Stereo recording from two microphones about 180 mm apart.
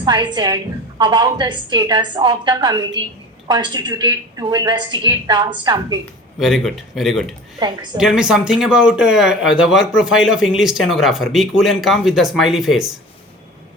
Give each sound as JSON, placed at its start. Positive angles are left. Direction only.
{"t": 0.0, "sound": "a woman's voice", "side_deg": -25}
{"t": 6.4, "sound": "speech", "side_deg": 0}